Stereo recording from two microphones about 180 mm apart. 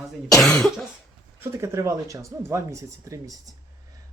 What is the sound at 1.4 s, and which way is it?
Speech, 15° right (ahead or behind).